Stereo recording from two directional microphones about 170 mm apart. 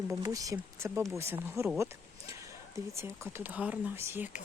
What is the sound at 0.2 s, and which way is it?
Speech, 20° right (ahead or behind).